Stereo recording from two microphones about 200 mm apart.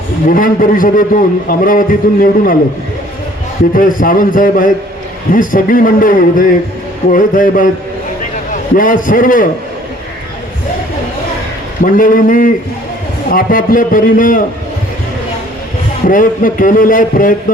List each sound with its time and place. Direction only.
0.3 s a man's voice: 45° left (ahead or behind)
3.8 s a man's voice: 45° left (ahead or behind)
11.8 s a man's voice: 45° left (ahead or behind)
16.0 s a man's voice: 45° left (ahead or behind)